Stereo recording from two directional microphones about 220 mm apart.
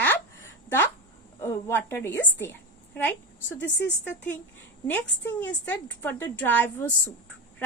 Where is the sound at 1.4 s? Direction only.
10° left (ahead or behind).